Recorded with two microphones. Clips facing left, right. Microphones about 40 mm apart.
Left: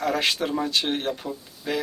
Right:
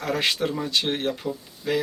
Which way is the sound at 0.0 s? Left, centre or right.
Centre.